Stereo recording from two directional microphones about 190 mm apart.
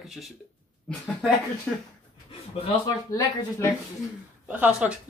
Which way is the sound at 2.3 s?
25° left (ahead or behind).